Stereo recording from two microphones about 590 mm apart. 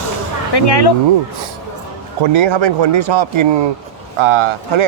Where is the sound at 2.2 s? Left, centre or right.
Right.